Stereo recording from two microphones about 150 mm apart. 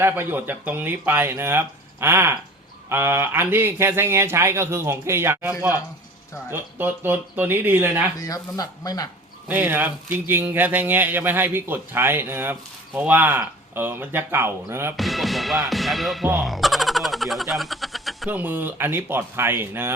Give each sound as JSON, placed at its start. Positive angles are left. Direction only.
{"t": 0.0, "sound": "speech", "side_deg": -15}
{"t": 8.2, "sound": "speech", "side_deg": 25}
{"t": 9.5, "sound": "speech", "side_deg": -15}
{"t": 14.9, "sound": "music", "side_deg": 0}
{"t": 16.2, "sound": "speech", "side_deg": -10}
{"t": 16.5, "sound": "a sound", "side_deg": 0}
{"t": 18.3, "sound": "speech", "side_deg": -10}